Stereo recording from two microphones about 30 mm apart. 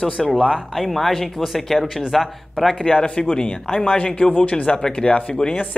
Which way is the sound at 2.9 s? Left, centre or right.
Left.